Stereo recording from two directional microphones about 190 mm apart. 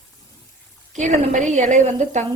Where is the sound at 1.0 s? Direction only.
40° right (ahead or behind).